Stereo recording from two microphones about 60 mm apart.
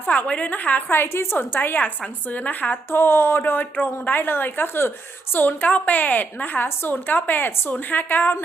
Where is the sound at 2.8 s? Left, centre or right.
Left.